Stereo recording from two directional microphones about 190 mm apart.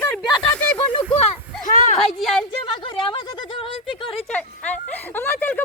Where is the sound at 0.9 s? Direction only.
25° left (ahead or behind).